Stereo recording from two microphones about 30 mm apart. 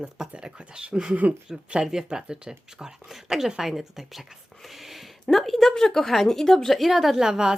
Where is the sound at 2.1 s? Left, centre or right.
Right.